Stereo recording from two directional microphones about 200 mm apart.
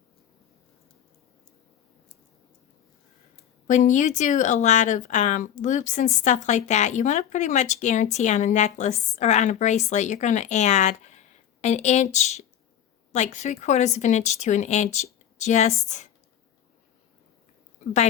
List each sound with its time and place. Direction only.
3.3 s speech: 40° left (ahead or behind)